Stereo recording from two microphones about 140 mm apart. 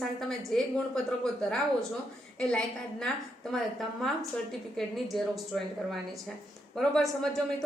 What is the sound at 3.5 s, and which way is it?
A woman's voice, centre (ahead or behind).